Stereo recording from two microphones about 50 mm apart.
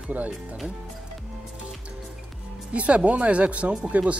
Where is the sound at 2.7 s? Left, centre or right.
Right.